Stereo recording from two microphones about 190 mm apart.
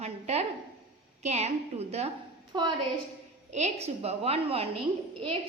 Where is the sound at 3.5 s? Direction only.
35° right (ahead or behind).